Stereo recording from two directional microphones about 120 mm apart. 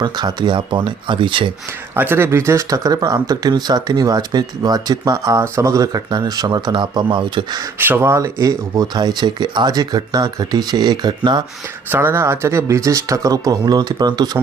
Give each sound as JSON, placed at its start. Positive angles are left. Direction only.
{"t": 0.0, "sound": "speech", "side_deg": -35}
{"t": 2.0, "sound": "speech", "side_deg": -20}
{"t": 7.8, "sound": "speech", "side_deg": -15}
{"t": 11.9, "sound": "speech", "side_deg": -20}